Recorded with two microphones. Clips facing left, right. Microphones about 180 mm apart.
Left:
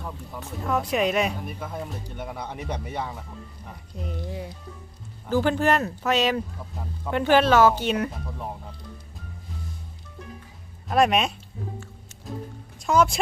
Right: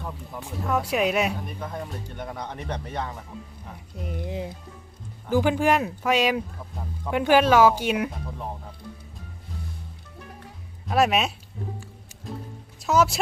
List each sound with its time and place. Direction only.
0.4 s speech: 5° right (ahead or behind)
1.5 s speech: 5° left (ahead or behind)
3.7 s speech: 5° right (ahead or behind)
4.2 s speech: 20° right (ahead or behind)
10.8 s speech: 5° right (ahead or behind)
12.8 s speech: 5° right (ahead or behind)